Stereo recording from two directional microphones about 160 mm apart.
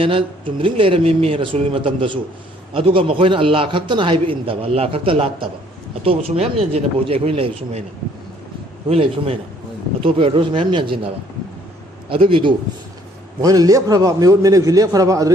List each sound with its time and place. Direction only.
0.0 s a man's voice: 35° right (ahead or behind)
8.9 s a man's voice: 35° right (ahead or behind)
13.4 s a man's voice: 20° right (ahead or behind)